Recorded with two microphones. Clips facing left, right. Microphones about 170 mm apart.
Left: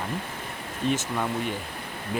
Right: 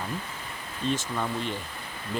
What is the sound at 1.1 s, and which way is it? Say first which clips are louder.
Speech: left 2 dB; 10° left (ahead or behind).